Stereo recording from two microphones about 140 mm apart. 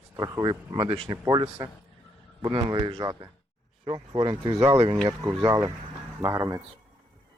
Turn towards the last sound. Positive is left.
turn(degrees=-20)  # may be behind; listen again after turning